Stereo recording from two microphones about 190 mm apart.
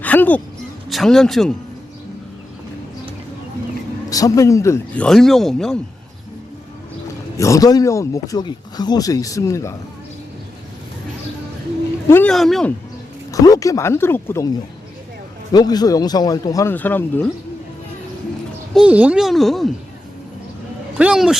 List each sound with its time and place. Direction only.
0.0 s a child's voice: 10° left (ahead or behind)
4.1 s speech: 15° left (ahead or behind)
5.0 s a child's voice: centre (ahead or behind)
7.3 s speech: 15° left (ahead or behind)
12.0 s speech: 10° left (ahead or behind)
12.3 s a child's voice: centre (ahead or behind)
13.3 s speech: 20° left (ahead or behind)
15.5 s a man's voice: 20° left (ahead or behind)
18.7 s a child's voice: 5° right (ahead or behind)
21.0 s a child's voice: 5° right (ahead or behind)